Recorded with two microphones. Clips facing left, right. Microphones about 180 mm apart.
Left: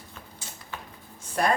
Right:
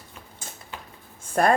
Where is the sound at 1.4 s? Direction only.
50° right (ahead or behind).